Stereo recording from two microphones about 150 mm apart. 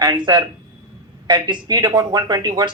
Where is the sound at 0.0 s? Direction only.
30° right (ahead or behind).